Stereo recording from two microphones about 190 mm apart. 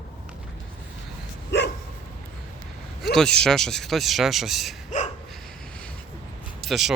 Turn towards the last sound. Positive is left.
turn(degrees=0)  # may be behind; listen again after turning